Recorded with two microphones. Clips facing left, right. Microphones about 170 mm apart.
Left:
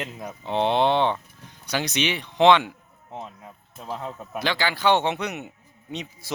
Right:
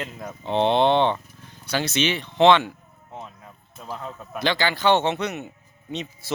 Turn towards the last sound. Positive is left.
turn(degrees=15)  # may be behind; listen again after turning